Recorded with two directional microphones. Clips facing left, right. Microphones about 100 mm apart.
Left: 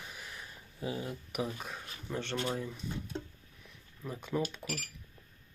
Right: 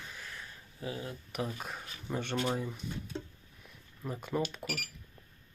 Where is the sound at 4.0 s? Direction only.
5° right (ahead or behind).